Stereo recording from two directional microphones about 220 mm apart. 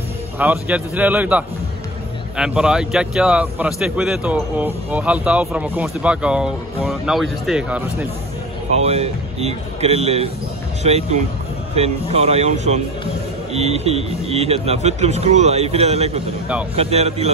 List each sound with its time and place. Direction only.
0.4 s speech: 5° right (ahead or behind)
8.7 s speech: 30° right (ahead or behind)